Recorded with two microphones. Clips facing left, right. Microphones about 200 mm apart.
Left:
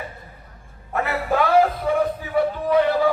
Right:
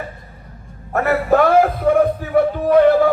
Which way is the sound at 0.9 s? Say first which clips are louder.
Right 7 dB; 50° right (ahead or behind).